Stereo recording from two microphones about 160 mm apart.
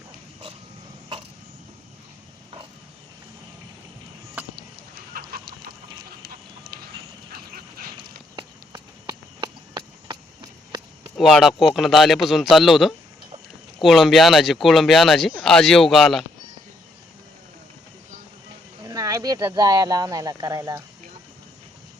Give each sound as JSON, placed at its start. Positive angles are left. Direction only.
{"t": 4.9, "sound": "chicken", "side_deg": -70}
{"t": 7.3, "sound": "dog", "side_deg": -65}
{"t": 8.4, "sound": "a sound", "side_deg": -30}
{"t": 11.2, "sound": "speech", "side_deg": 0}
{"t": 18.8, "sound": "speech", "side_deg": -25}